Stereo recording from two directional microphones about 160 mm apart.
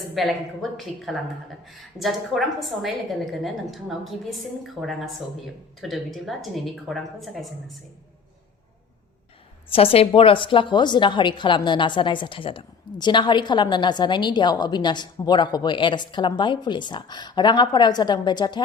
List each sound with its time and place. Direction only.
0.1 s a woman's voice: centre (ahead or behind)
9.6 s a woman's voice: 35° left (ahead or behind)